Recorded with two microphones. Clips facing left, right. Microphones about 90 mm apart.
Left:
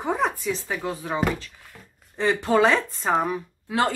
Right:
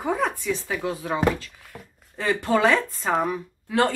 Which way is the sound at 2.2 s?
5° left (ahead or behind).